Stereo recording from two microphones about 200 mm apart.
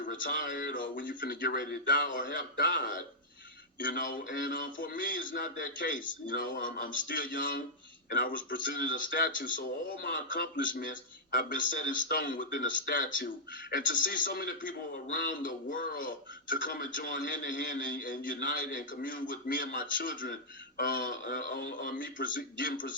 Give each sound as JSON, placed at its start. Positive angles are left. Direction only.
{"t": 0.0, "sound": "a man's voice", "side_deg": 45}